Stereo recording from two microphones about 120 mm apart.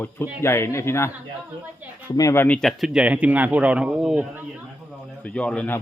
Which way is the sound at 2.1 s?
30° left (ahead or behind).